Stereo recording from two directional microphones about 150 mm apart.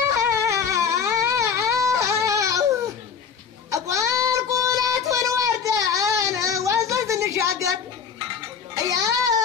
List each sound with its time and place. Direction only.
0.1 s a sound: 20° right (ahead or behind)
3.7 s child singing: 20° right (ahead or behind)
8.8 s music: 25° right (ahead or behind)